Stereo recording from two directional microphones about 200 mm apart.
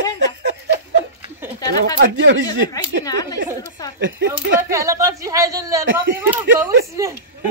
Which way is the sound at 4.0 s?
65° right (ahead or behind).